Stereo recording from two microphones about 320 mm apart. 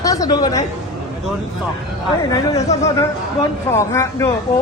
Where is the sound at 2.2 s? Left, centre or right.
Centre.